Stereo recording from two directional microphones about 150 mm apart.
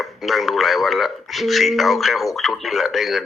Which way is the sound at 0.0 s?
Centre (ahead or behind).